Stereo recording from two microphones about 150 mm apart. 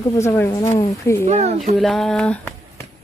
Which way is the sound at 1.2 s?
50° right (ahead or behind).